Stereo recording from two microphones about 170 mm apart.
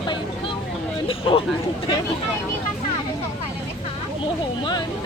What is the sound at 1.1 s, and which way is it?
Speech, 35° left (ahead or behind).